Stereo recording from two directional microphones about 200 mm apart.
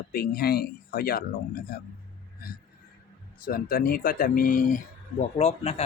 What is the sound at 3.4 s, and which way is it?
A man's voice, 45° left (ahead or behind).